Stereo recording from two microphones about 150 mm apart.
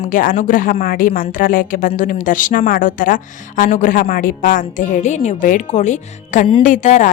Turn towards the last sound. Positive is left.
turn(degrees=55)  # may be behind; listen again after turning